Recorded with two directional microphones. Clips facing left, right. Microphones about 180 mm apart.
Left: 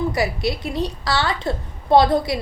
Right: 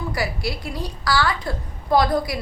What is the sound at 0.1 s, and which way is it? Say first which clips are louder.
A woman's voice: left 4 dB; 20° left (ahead or behind).